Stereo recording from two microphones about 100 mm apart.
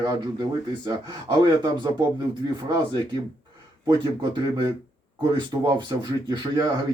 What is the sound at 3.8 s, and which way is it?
Speech, 50° right (ahead or behind).